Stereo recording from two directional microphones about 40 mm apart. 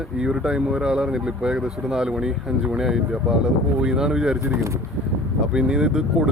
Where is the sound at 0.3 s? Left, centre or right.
Centre.